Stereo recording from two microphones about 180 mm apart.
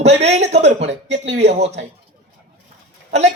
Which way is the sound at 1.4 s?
40° right (ahead or behind).